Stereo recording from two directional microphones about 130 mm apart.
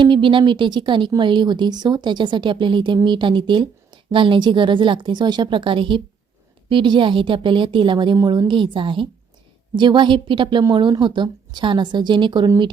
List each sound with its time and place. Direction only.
0.0 s a woman's voice: 40° right (ahead or behind)